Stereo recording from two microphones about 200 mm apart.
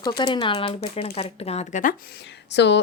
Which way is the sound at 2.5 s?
60° left (ahead or behind).